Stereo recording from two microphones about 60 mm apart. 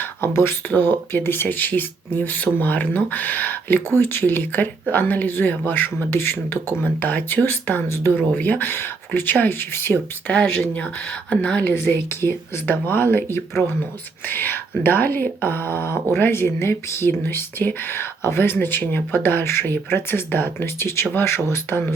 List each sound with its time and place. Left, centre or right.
0.0 s a sound: left
0.7 s speech: left
10.2 s a woman's voice: centre
11.7 s speech: left